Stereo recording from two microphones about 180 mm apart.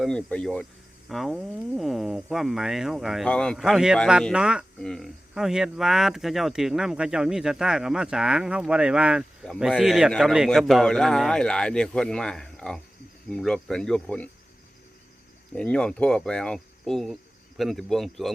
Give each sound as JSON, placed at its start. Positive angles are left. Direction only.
{"t": 0.0, "sound": "speech", "side_deg": 5}
{"t": 15.5, "sound": "speech", "side_deg": 5}